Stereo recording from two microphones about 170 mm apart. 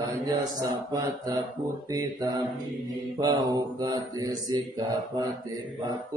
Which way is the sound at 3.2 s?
25° right (ahead or behind).